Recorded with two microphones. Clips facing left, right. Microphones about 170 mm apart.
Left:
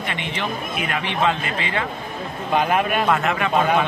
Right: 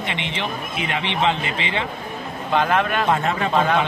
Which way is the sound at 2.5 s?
10° left (ahead or behind).